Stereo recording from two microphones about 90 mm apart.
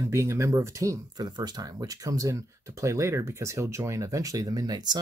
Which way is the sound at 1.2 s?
50° right (ahead or behind).